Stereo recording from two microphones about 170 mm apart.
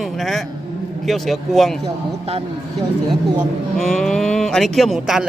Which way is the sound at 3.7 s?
Centre (ahead or behind).